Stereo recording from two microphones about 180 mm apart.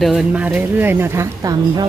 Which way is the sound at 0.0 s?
5° right (ahead or behind).